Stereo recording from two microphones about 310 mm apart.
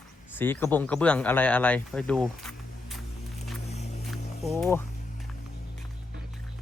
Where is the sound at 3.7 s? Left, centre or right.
Left.